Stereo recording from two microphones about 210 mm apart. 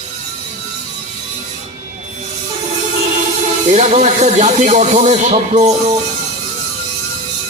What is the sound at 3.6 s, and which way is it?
Speech, 30° right (ahead or behind).